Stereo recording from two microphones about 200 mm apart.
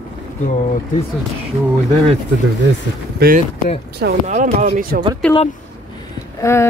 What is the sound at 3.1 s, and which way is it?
Speech, 45° right (ahead or behind).